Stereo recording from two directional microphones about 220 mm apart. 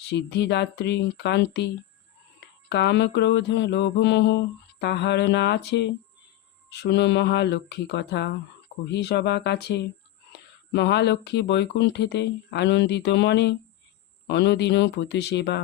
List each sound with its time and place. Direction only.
0.1 s mantra: 50° left (ahead or behind)